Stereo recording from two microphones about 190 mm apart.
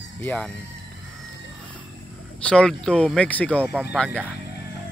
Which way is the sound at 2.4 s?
5° left (ahead or behind).